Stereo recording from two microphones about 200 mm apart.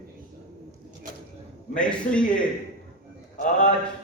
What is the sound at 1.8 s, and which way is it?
Speech, 5° left (ahead or behind).